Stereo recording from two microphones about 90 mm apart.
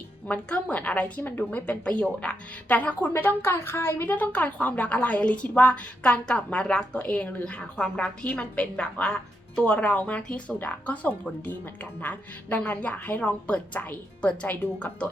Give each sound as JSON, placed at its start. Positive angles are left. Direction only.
{"t": 0.3, "sound": "a woman's voice", "side_deg": 15}